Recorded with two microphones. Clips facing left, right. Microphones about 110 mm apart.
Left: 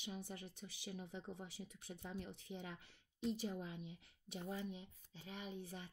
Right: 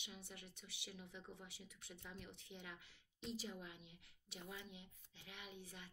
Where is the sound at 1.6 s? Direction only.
55° left (ahead or behind).